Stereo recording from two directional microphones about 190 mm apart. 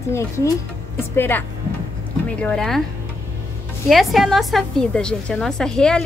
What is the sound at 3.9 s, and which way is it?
A woman's voice, centre (ahead or behind).